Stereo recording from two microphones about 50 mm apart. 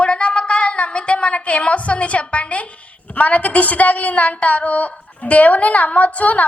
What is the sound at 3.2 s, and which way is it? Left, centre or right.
A woman's voice, left.